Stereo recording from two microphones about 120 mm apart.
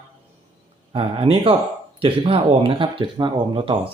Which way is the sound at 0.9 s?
50° right (ahead or behind).